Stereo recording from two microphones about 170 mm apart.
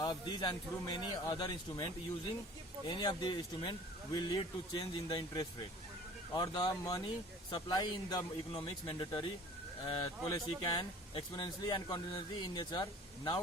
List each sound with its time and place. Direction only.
0.0 s speech: 25° left (ahead or behind)